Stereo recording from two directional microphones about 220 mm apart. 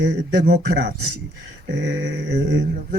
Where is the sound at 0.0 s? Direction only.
45° right (ahead or behind).